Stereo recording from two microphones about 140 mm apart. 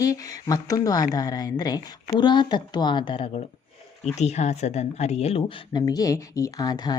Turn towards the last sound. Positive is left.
turn(degrees=30)  # may be behind; listen again after turning